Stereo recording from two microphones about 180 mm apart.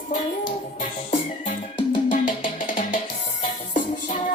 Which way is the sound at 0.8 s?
40° left (ahead or behind).